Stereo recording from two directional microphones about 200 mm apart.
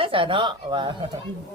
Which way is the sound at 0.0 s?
25° right (ahead or behind).